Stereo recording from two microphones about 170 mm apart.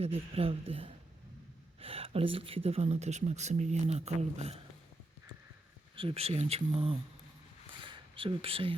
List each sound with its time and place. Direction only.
0.0 s speech: 35° right (ahead or behind)
6.0 s speech: 35° right (ahead or behind)
7.7 s a sound: 30° right (ahead or behind)